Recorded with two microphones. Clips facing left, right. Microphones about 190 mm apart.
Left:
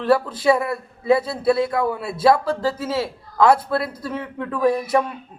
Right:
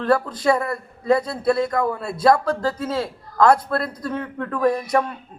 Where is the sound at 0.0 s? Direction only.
5° left (ahead or behind).